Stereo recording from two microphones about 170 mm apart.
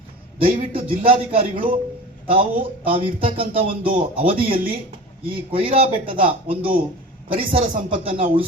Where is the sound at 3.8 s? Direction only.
55° right (ahead or behind).